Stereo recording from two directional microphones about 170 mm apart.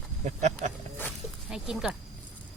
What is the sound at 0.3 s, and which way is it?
Speech, 45° right (ahead or behind).